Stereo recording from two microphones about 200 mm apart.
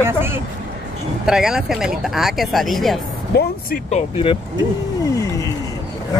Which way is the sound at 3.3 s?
55° left (ahead or behind).